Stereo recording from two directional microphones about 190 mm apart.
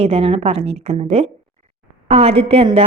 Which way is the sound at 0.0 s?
30° right (ahead or behind).